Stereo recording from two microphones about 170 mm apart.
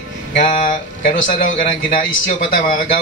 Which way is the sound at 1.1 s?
50° left (ahead or behind).